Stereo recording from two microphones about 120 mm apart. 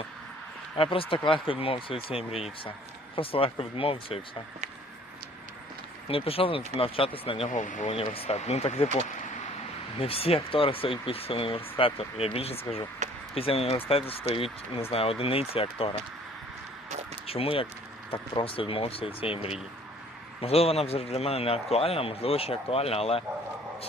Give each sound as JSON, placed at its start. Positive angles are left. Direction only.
{"t": 0.8, "sound": "speech", "side_deg": 45}
{"t": 6.1, "sound": "speech", "side_deg": 50}
{"t": 7.5, "sound": "speech", "side_deg": 90}
{"t": 8.1, "sound": "a man's voice", "side_deg": 50}
{"t": 10.0, "sound": "speech", "side_deg": 55}
{"t": 17.2, "sound": "a man's voice", "side_deg": 55}